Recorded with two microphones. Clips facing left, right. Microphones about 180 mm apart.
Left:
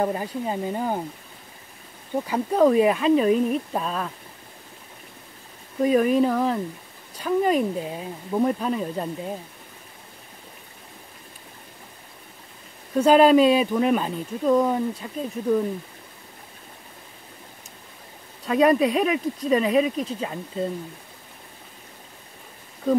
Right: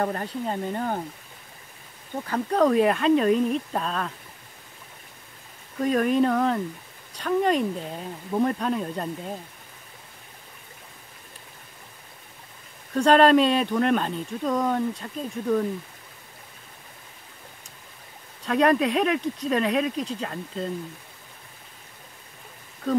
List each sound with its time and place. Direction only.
0.0 s speech: 10° left (ahead or behind)
2.2 s speech: 5° left (ahead or behind)
5.8 s speech: 5° left (ahead or behind)
12.9 s speech: 5° left (ahead or behind)
18.4 s speech: 5° left (ahead or behind)